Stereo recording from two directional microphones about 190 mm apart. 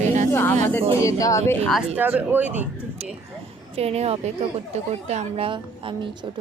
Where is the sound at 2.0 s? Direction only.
10° right (ahead or behind).